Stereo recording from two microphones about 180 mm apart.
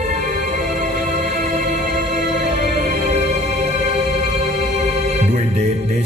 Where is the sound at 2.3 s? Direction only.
40° right (ahead or behind).